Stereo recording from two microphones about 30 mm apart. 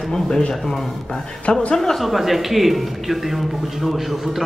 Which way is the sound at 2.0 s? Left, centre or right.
Centre.